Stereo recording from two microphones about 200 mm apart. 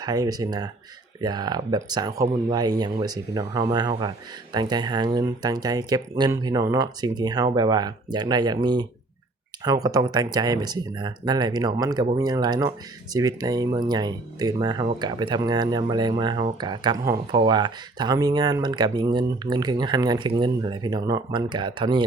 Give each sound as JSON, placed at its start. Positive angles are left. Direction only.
{"t": 0.0, "sound": "speech", "side_deg": -20}